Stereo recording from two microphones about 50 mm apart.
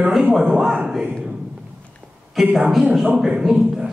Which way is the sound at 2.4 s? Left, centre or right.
Centre.